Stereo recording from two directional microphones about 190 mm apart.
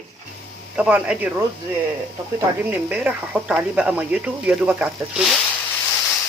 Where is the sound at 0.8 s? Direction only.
5° right (ahead or behind).